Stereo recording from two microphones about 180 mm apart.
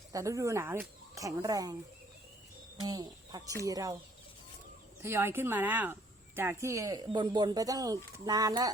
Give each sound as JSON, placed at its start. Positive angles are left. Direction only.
{"t": 0.1, "sound": "speech", "side_deg": -15}
{"t": 2.8, "sound": "speech", "side_deg": -20}
{"t": 5.0, "sound": "speech", "side_deg": -15}